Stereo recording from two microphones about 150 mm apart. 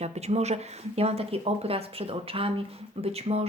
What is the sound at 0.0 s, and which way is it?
Speech, 45° right (ahead or behind).